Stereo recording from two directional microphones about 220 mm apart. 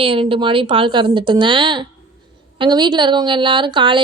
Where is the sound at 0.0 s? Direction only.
25° right (ahead or behind).